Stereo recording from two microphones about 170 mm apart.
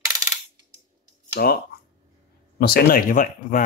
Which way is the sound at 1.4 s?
65° left (ahead or behind).